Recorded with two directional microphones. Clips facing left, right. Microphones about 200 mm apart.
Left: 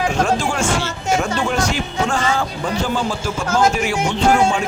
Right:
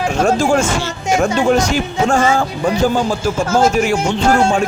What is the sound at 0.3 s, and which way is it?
Music, 45° right (ahead or behind).